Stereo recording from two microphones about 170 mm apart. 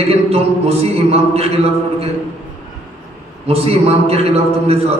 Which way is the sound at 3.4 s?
35° right (ahead or behind).